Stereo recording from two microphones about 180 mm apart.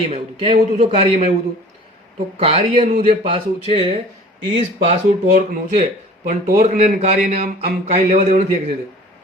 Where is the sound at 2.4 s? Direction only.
35° right (ahead or behind).